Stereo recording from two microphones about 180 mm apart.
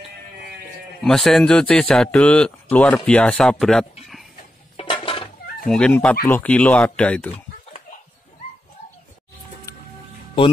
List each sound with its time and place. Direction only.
1.0 s a man's voice: 5° left (ahead or behind)
4.7 s dishes: 30° left (ahead or behind)
5.7 s speech: 5° left (ahead or behind)
9.7 s music: 15° left (ahead or behind)